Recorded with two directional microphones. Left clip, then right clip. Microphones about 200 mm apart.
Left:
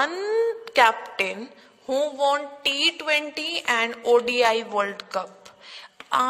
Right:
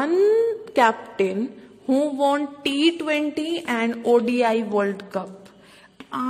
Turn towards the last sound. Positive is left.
turn(degrees=30)  # may be behind; listen again after turning